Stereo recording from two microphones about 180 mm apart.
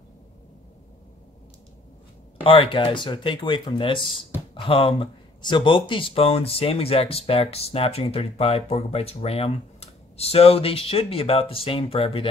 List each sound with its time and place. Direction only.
2.4 s speech: 30° left (ahead or behind)